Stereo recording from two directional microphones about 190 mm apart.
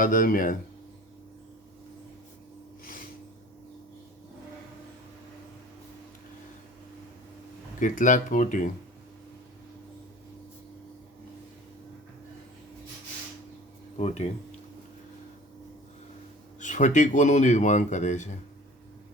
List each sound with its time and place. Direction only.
0.0 s speech: 45° left (ahead or behind)
2.8 s a sound: 45° left (ahead or behind)
7.8 s speech: 40° left (ahead or behind)
13.9 s speech: 35° left (ahead or behind)
16.6 s speech: 40° left (ahead or behind)